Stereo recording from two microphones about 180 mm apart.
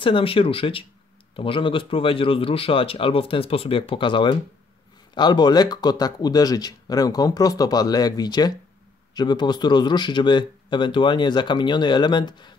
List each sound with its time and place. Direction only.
0.0 s speech: 30° left (ahead or behind)